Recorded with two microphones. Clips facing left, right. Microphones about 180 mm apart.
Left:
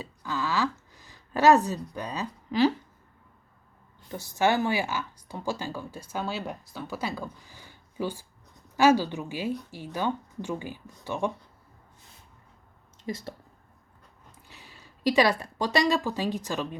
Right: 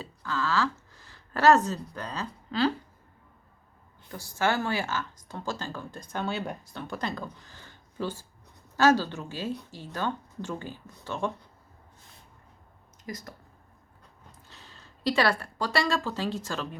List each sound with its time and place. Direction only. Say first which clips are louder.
0.0 s speech: even; 15° left (ahead or behind)
4.1 s speech: left 3 dB; 20° left (ahead or behind)
13.1 s speech: left 5 dB; 25° left (ahead or behind)
14.4 s speech: left 3 dB; 10° left (ahead or behind)